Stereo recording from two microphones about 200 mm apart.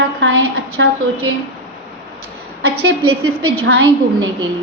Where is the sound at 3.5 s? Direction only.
80° right.